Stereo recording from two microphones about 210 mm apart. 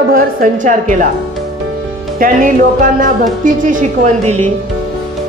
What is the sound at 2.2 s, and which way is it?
Speech, 40° right (ahead or behind).